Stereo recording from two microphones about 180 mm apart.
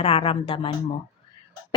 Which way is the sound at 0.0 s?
35° left (ahead or behind).